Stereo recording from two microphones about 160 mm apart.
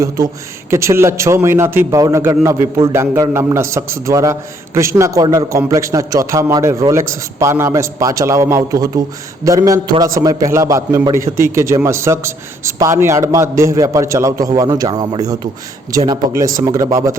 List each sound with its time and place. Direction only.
0.7 s a man's voice: 15° right (ahead or behind)